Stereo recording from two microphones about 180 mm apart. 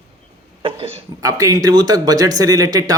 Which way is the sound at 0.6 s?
30° right (ahead or behind).